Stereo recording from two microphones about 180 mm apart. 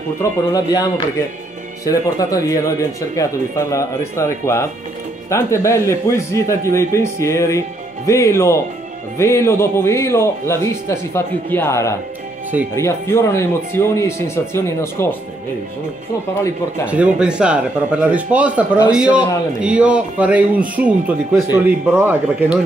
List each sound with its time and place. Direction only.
0.2 s speech: 20° left (ahead or behind)
16.8 s a man's voice: 5° right (ahead or behind)